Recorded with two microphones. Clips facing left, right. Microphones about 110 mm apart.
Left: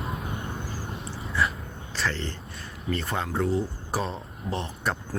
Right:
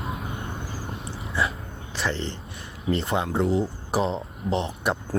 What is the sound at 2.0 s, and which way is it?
Speech, 20° right (ahead or behind).